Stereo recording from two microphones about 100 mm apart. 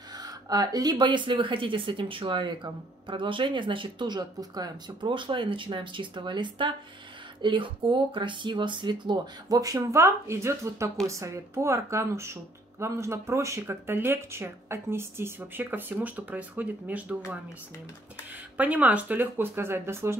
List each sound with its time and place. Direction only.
0.1 s speech: 40° right (ahead or behind); by 17.2 s 15° right (ahead or behind)
18.6 s speech: 15° right (ahead or behind)